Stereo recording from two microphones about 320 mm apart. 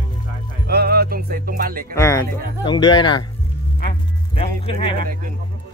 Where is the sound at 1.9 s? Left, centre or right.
Centre.